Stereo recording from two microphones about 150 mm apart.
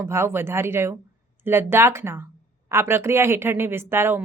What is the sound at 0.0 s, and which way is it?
Speech, 15° right (ahead or behind).